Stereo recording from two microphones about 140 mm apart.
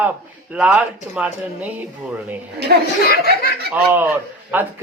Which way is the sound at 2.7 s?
90° right.